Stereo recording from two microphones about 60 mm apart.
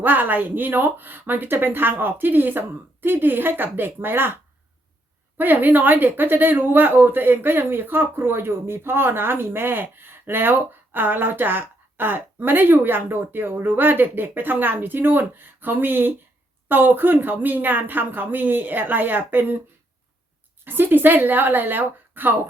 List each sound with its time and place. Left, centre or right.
0.0 s speech: right
5.4 s speech: right
20.7 s speech: right